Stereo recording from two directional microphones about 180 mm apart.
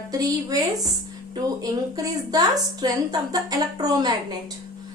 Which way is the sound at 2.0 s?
20° right (ahead or behind).